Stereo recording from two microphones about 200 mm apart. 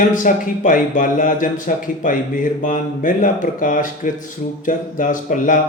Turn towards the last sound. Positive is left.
turn(degrees=40)  # may be behind; listen again after turning